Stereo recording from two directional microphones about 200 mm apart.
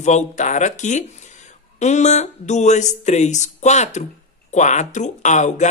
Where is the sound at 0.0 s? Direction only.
35° left (ahead or behind).